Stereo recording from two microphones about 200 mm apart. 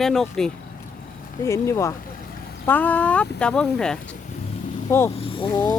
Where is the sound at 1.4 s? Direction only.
15° left (ahead or behind).